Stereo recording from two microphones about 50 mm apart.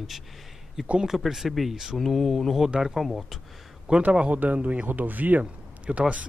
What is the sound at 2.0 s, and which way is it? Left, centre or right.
Speech, centre.